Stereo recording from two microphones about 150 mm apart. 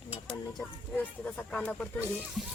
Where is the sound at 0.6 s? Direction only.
10° left (ahead or behind).